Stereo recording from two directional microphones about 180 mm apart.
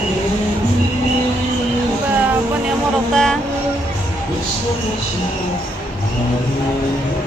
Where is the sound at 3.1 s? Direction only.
Centre (ahead or behind).